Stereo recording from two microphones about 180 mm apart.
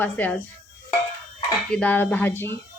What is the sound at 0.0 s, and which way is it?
Speech, 10° left (ahead or behind).